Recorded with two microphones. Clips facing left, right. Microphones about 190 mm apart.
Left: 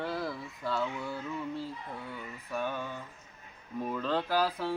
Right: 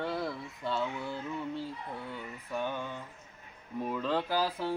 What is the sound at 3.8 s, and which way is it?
Speech, 10° right (ahead or behind).